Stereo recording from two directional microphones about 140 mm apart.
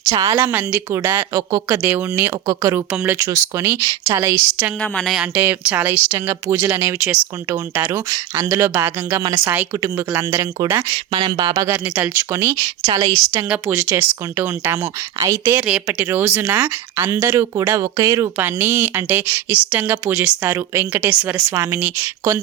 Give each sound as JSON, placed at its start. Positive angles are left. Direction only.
{"t": 0.0, "sound": "a woman's voice", "side_deg": -25}
{"t": 1.8, "sound": "a woman's voice", "side_deg": -15}
{"t": 4.8, "sound": "a woman's voice", "side_deg": 5}
{"t": 11.6, "sound": "a woman's voice", "side_deg": -15}
{"t": 13.3, "sound": "speech", "side_deg": -15}
{"t": 15.6, "sound": "speech", "side_deg": -5}
{"t": 16.0, "sound": "speech", "side_deg": -15}